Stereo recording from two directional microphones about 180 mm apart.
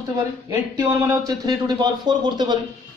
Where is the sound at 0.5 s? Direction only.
15° right (ahead or behind).